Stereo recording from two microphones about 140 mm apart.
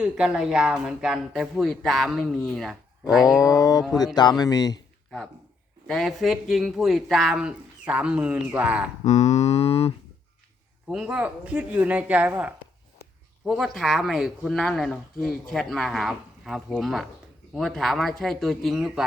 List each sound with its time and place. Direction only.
0.0 s speech: 5° right (ahead or behind)
3.3 s speech: 25° left (ahead or behind)
5.9 s speech: centre (ahead or behind)
9.0 s a sound: 55° left (ahead or behind)
10.8 s speech: 5° right (ahead or behind)
13.4 s speech: centre (ahead or behind)